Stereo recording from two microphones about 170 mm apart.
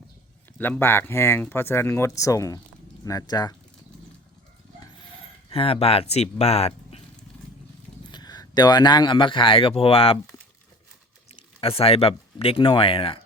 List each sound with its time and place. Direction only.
0.6 s speech: 10° left (ahead or behind)
5.5 s speech: 35° left (ahead or behind)
8.1 s speech: 25° left (ahead or behind)
11.3 s speech: 35° left (ahead or behind)